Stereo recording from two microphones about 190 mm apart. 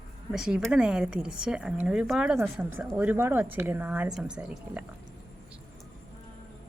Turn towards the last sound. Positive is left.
turn(degrees=-5)  # may be behind; listen again after turning